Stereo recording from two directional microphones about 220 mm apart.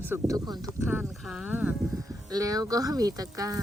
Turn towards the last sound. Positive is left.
turn(degrees=-15)  # may be behind; listen again after turning